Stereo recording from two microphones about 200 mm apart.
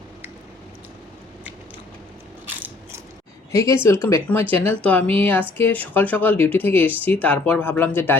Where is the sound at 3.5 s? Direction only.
15° left (ahead or behind).